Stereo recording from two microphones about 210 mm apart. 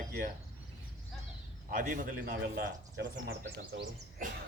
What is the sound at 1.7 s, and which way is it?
A man's voice, 40° right (ahead or behind).